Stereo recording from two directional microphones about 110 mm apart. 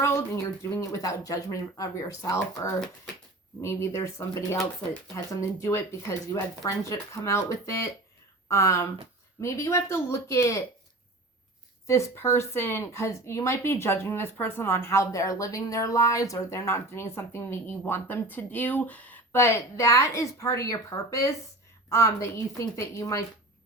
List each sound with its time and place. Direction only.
0.7 s speech: 30° left (ahead or behind)
11.9 s speech: 25° left (ahead or behind)